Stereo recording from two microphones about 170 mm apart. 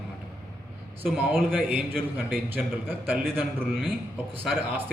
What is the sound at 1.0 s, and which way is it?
A man's voice, 5° right (ahead or behind).